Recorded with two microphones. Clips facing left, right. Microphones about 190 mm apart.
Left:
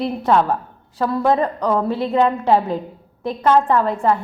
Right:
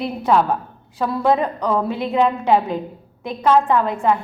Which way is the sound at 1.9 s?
30° left (ahead or behind).